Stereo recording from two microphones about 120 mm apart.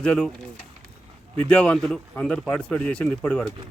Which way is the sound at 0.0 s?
5° left (ahead or behind).